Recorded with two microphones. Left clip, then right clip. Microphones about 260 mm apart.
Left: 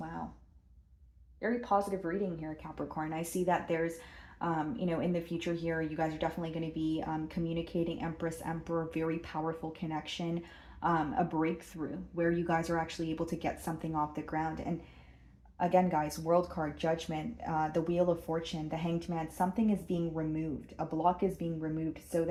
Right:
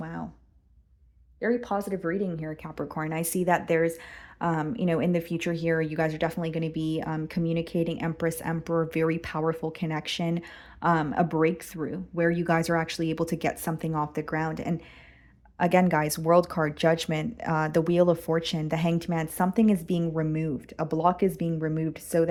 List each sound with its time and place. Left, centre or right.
1.4 s speech: right